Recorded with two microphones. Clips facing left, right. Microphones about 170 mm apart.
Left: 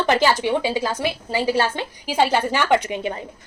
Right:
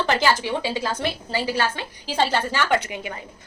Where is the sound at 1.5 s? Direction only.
20° left (ahead or behind).